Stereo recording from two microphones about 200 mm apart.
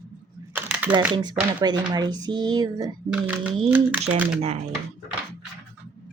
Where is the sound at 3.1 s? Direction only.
5° right (ahead or behind).